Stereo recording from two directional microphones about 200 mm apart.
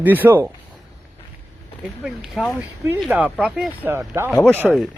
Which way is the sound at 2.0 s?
5° right (ahead or behind).